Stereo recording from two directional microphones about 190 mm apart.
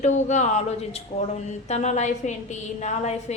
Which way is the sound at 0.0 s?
40° left (ahead or behind).